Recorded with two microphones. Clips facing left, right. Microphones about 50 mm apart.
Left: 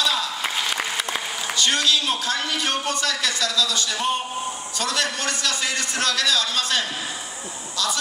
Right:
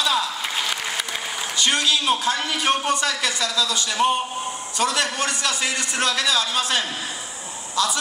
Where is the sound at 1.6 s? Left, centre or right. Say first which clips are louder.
Even; centre.